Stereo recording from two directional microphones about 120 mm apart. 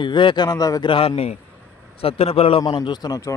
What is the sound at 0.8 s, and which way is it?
Speech, 50° left (ahead or behind).